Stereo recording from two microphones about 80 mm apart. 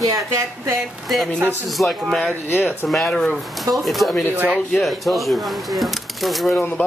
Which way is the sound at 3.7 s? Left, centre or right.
Centre.